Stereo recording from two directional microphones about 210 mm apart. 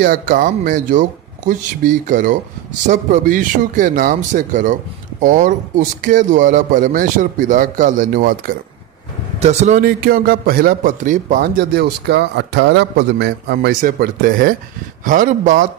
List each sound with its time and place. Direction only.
0.0 s speech: 45° right (ahead or behind)
9.4 s a man's voice: 30° right (ahead or behind)